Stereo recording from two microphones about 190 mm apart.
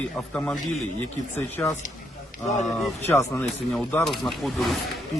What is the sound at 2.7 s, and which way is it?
Speech, centre (ahead or behind).